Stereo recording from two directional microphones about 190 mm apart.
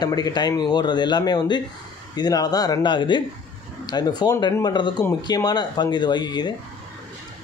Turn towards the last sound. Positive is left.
turn(degrees=25)  # may be behind; listen again after turning